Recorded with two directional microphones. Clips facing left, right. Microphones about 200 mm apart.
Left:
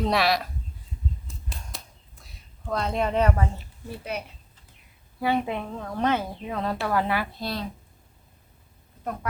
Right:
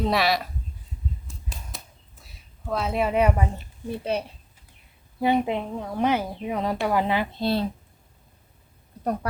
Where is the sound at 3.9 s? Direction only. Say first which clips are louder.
Right 6 dB; 30° right (ahead or behind).